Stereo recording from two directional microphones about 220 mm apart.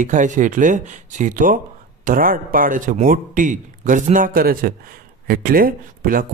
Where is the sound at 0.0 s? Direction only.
35° right (ahead or behind).